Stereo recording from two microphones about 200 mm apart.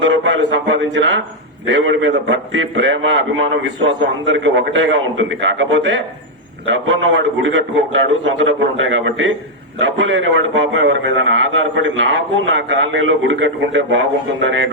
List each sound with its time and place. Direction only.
0.0 s a man's voice: 65° right (ahead or behind)